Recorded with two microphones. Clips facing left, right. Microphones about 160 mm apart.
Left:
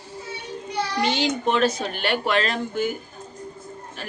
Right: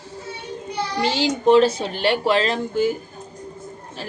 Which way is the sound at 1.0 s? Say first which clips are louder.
Right 4 dB; 30° right (ahead or behind).